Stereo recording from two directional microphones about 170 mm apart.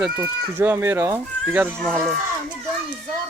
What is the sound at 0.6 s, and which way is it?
Speech, 15° right (ahead or behind).